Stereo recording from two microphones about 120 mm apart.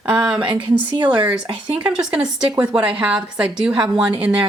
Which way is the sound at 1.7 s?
5° right (ahead or behind).